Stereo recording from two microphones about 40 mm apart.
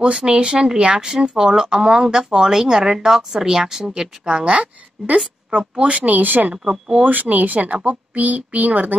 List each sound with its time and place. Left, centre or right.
0.2 s speech: right
4.3 s a woman's voice: right
6.5 s speech: centre
7.1 s speech: right